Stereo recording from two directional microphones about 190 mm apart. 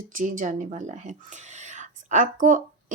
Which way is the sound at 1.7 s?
40° right (ahead or behind).